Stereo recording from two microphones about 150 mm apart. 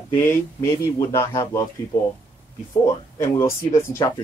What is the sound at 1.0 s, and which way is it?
Speech, 20° left (ahead or behind).